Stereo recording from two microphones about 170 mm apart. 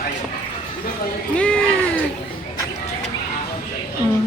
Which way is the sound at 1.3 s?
5° left (ahead or behind).